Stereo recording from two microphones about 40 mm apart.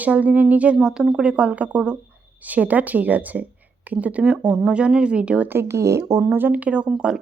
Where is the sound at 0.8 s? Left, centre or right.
Centre.